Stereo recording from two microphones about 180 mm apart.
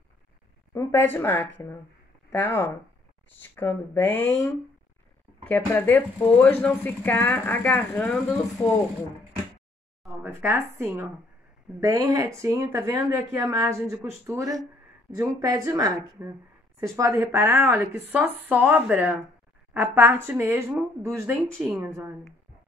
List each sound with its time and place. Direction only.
1.1 s speech: 10° left (ahead or behind)
10.2 s speech: 15° right (ahead or behind)
21.5 s speech: 5° left (ahead or behind)